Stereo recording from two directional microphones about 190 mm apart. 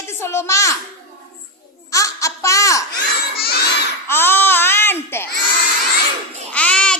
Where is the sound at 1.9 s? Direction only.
15° left (ahead or behind).